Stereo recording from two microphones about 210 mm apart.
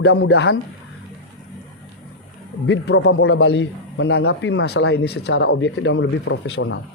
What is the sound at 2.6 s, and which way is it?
Speech, 55° left (ahead or behind).